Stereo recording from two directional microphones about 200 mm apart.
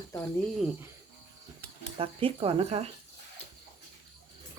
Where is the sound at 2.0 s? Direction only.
25° right (ahead or behind).